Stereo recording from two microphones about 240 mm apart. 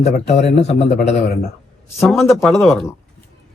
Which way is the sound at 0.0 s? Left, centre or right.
Left.